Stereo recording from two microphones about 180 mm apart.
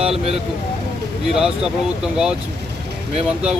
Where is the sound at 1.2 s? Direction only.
5° right (ahead or behind).